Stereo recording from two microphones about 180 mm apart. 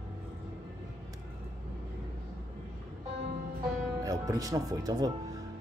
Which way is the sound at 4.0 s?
20° right (ahead or behind).